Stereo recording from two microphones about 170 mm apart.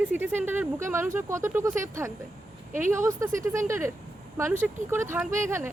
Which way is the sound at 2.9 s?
15° right (ahead or behind).